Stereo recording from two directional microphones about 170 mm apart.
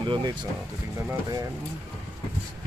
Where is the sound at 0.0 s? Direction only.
30° right (ahead or behind).